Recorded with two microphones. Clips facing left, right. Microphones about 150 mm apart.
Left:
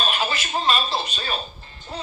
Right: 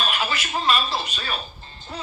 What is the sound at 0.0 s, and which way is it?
A woman's voice, 25° left (ahead or behind).